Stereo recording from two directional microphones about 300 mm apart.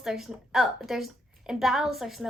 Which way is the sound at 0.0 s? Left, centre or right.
Centre.